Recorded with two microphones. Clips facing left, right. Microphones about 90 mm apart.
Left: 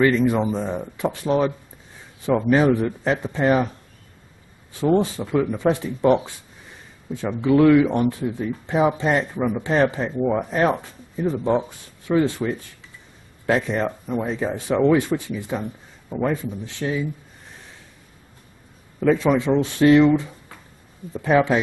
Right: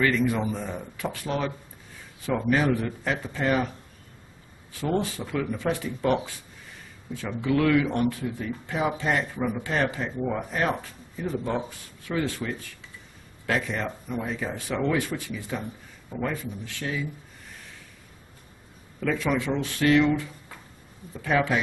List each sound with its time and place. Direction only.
0.0 s speech: 25° left (ahead or behind)
4.7 s speech: 25° left (ahead or behind)
18.9 s speech: 25° left (ahead or behind)